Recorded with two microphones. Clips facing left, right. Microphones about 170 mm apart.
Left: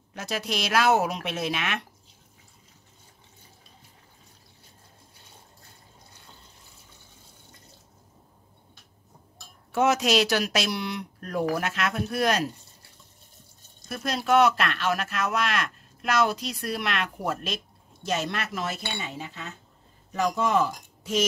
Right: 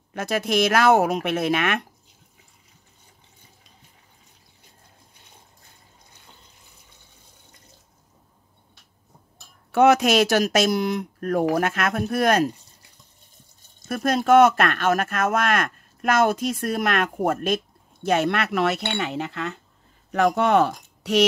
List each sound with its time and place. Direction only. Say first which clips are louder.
0.1 s speech: right 8 dB; 55° right (ahead or behind)
9.7 s speech: right 6 dB; 65° right (ahead or behind)
13.8 s speech: right 7 dB; 50° right (ahead or behind); by 21.3 s 70° right (ahead or behind)